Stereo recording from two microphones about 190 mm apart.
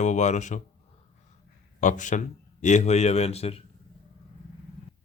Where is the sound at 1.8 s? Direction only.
40° left (ahead or behind).